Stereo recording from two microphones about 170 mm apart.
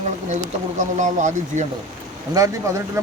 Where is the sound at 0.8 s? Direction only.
45° right (ahead or behind).